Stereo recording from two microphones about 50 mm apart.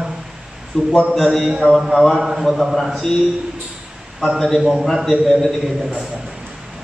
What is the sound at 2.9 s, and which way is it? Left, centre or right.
Mantra, centre.